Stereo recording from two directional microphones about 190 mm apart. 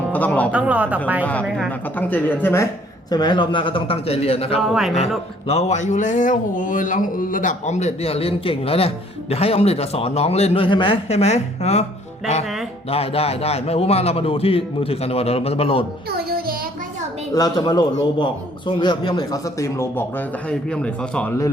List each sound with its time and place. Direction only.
0.1 s music: 10° left (ahead or behind)
0.5 s speech: 10° right (ahead or behind)
1.2 s a man's voice: 5° left (ahead or behind)
3.1 s a man's voice: 20° left (ahead or behind)
4.6 s speech: centre (ahead or behind)
5.5 s speech: 35° left (ahead or behind)
12.9 s speech: 30° left (ahead or behind)
16.0 s music: 55° right (ahead or behind)
17.3 s a man's voice: 20° left (ahead or behind)